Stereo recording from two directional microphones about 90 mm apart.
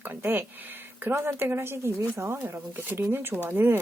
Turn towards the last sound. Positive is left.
turn(degrees=-25)  # may be behind; listen again after turning